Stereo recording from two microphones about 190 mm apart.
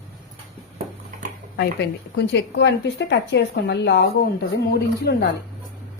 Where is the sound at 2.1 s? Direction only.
65° left (ahead or behind).